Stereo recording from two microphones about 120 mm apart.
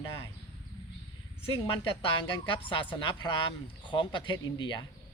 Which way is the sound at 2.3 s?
45° left (ahead or behind).